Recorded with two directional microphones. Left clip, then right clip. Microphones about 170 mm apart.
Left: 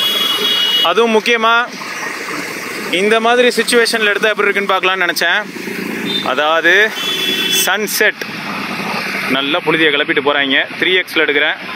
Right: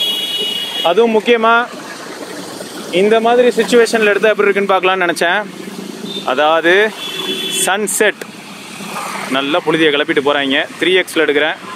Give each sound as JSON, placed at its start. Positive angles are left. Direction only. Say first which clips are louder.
{"t": 0.8, "sound": "speech", "louder": "right 6 dB", "side_deg": 10}
{"t": 2.9, "sound": "speech", "louder": "right 1 dB", "side_deg": 5}
{"t": 3.2, "sound": "speech", "louder": "even", "side_deg": 20}
{"t": 3.6, "sound": "speech", "louder": "right 1 dB", "side_deg": 0}
{"t": 9.3, "sound": "speech", "louder": "right 1 dB", "side_deg": -10}